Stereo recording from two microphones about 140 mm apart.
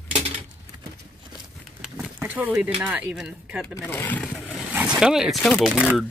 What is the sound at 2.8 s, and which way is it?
Speech, 10° right (ahead or behind).